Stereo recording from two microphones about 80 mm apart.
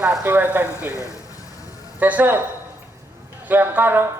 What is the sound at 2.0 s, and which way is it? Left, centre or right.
Speech, right.